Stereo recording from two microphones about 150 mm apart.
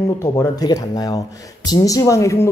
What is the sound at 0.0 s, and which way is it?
Speech, 20° left (ahead or behind).